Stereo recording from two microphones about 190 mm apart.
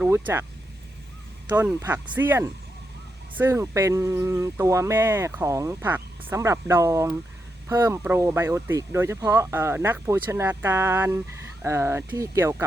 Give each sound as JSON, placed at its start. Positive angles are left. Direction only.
{"t": 0.0, "sound": "speech", "side_deg": -10}
{"t": 1.5, "sound": "speech", "side_deg": -10}